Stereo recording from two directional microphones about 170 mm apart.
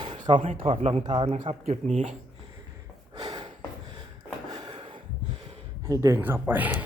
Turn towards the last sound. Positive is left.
turn(degrees=-10)  # may be behind; listen again after turning